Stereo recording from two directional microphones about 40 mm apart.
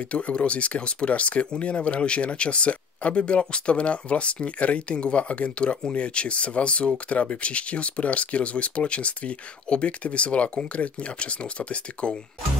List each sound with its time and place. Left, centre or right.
0.0 s speech: left